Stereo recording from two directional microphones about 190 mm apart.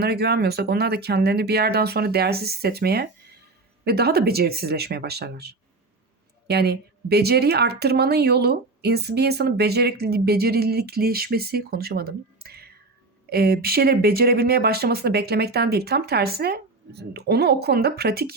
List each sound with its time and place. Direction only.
0.0 s speech: 60° right (ahead or behind)